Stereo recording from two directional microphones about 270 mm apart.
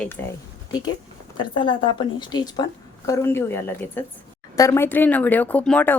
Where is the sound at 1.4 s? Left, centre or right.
Centre.